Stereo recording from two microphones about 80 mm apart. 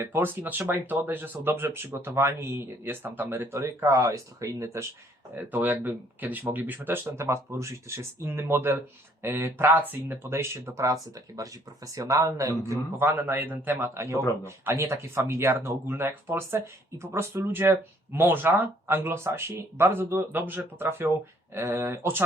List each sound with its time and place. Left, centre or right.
0.0 s speech: right
5.3 s speech: right